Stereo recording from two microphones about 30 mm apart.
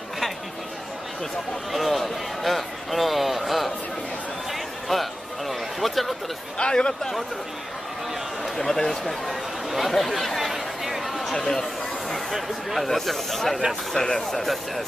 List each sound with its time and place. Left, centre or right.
1.7 s a sound: centre
6.6 s speech: left
7.0 s speech: centre
8.5 s speech: centre
9.2 s speech: centre
9.9 s chatter: centre
11.3 s speech: centre
12.7 s speech: centre